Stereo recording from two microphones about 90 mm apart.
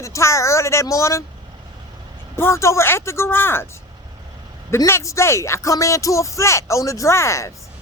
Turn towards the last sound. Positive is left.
turn(degrees=35)  # may be behind; listen again after turning